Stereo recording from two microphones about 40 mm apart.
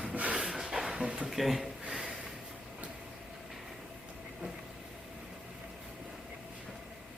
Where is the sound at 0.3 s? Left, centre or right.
Centre.